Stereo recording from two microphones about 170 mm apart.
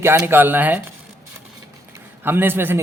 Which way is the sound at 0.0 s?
15° right (ahead or behind).